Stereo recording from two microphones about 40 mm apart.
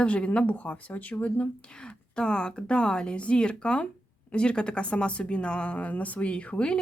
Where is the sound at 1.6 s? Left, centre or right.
Left.